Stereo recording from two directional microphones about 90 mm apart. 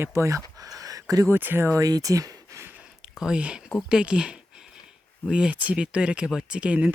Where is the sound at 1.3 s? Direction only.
25° right (ahead or behind).